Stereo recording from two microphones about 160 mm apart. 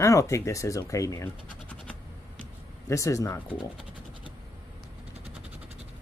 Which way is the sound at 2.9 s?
20° left (ahead or behind).